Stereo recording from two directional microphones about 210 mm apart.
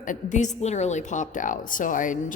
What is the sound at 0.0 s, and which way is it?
A woman's voice, 35° left (ahead or behind).